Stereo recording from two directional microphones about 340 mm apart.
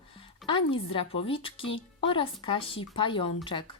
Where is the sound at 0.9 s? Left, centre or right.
Centre.